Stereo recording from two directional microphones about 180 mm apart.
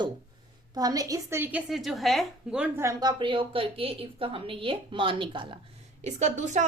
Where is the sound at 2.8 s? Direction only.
20° right (ahead or behind).